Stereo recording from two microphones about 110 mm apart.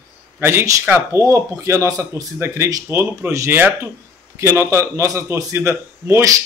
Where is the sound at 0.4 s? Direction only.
25° right (ahead or behind).